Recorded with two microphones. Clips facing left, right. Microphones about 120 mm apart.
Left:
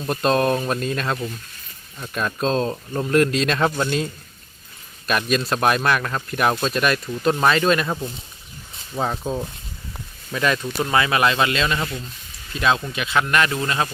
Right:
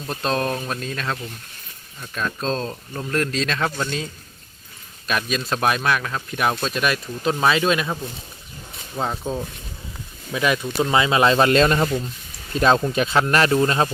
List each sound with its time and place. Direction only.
0.0 s speech: 5° left (ahead or behind)
9.0 s speech: 5° left (ahead or behind)
10.3 s speech: 10° right (ahead or behind)
10.9 s speech: 20° right (ahead or behind)